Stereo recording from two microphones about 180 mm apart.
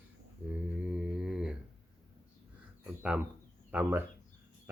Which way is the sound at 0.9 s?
5° right (ahead or behind).